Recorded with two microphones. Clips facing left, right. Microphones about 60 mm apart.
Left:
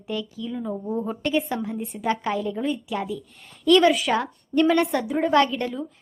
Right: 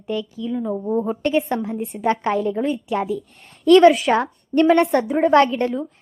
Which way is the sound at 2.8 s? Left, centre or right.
Right.